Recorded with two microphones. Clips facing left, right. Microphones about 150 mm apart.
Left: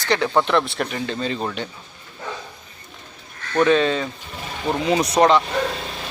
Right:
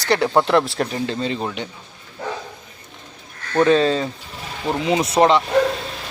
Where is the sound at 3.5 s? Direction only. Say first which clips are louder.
Right 2 dB; 30° right (ahead or behind).